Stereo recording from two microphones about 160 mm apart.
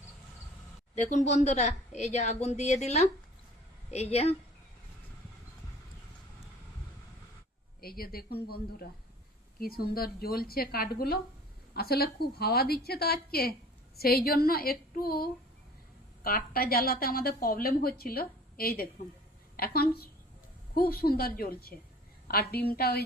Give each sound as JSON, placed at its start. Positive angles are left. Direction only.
{"t": 0.9, "sound": "a woman's voice", "side_deg": 45}
{"t": 7.8, "sound": "a woman's voice", "side_deg": 70}